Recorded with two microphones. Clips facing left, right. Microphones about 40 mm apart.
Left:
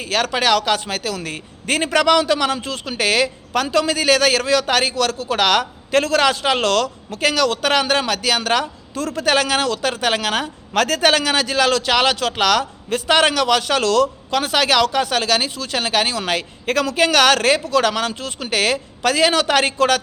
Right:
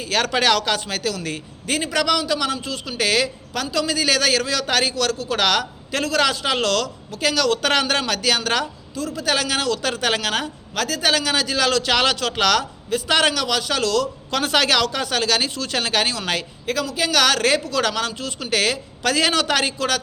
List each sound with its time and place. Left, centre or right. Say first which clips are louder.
0.1 s speech: left 1 dB; centre
1.6 s a man's voice: left 5 dB; left
7.6 s a man's voice: left 2 dB; centre
9.0 s a man's voice: left 3 dB; left
9.2 s a man's voice: left 4 dB; left
10.8 s a man's voice: left 6 dB; left
11.1 s a man's voice: left 3 dB; left
14.3 s a man's voice: left 1 dB; centre
16.6 s a man's voice: left 6 dB; left
19.6 s a man's voice: left 6 dB; left